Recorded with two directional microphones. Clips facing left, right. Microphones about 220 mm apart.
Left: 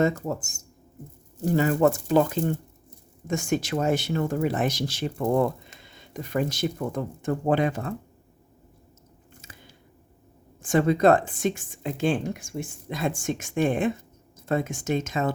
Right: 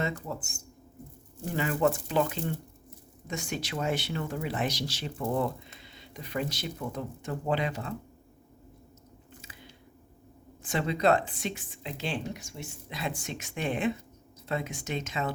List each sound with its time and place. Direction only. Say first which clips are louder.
0.0 s speech: left 9 dB; 45° left (ahead or behind)
9.4 s squish: left 2 dB; 45° left (ahead or behind)
10.6 s speech: left 8 dB; 50° left (ahead or behind)